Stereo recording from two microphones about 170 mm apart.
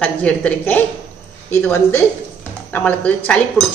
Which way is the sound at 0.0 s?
10° left (ahead or behind).